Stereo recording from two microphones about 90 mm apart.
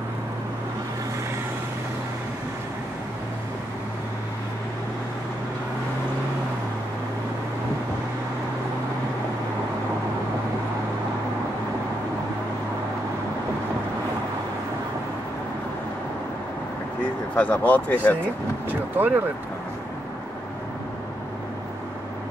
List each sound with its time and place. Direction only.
17.4 s speech: 15° left (ahead or behind)
18.7 s speech: 20° right (ahead or behind)